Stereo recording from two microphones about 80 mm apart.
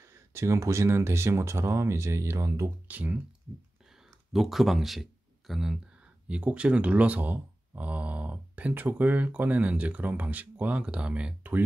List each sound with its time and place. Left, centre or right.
0.0 s speech: right
2.9 s speech: right
4.3 s speech: centre